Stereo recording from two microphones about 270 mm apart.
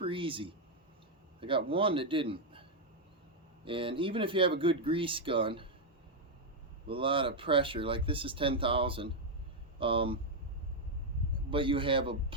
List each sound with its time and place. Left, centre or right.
0.0 s a sound: centre
1.4 s a man's voice: centre
6.8 s speech: centre
11.5 s speech: centre